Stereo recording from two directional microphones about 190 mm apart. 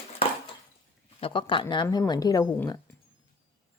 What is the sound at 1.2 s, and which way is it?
A woman's voice, 25° left (ahead or behind).